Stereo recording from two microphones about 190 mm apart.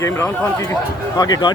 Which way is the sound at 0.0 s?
15° left (ahead or behind).